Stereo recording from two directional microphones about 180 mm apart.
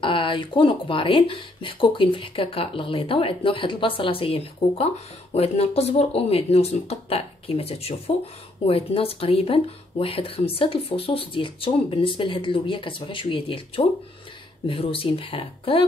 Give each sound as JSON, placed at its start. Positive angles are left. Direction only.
{"t": 0.0, "sound": "speech", "side_deg": 30}